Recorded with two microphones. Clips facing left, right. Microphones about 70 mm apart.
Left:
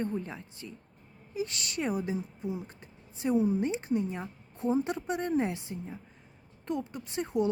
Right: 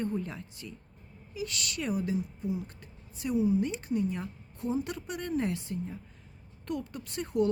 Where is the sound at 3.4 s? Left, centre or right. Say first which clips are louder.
Right 1 dB; left.